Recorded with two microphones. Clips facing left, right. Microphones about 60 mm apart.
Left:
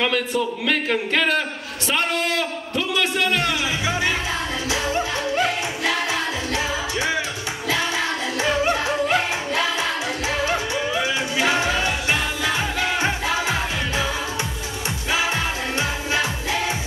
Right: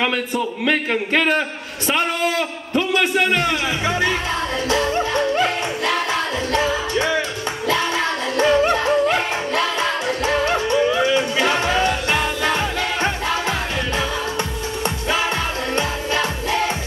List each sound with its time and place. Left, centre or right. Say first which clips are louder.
0.4 s speech: right 2 dB; centre
4.6 s music: right 4 dB; right
6.5 s music: right 7 dB; right
8.4 s music: right 5 dB; right
16.1 s music: right 2 dB; right